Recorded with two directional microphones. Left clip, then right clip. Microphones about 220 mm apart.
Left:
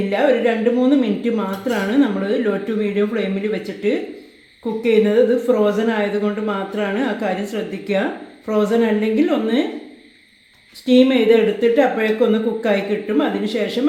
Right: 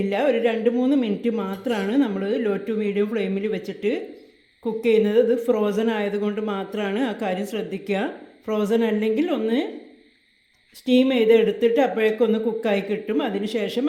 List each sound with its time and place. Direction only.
0.1 s a woman's voice: 45° right (ahead or behind)
10.8 s a woman's voice: 40° right (ahead or behind)